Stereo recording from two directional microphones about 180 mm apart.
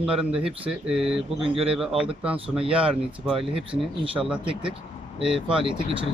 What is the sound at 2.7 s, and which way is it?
Speech, 5° right (ahead or behind).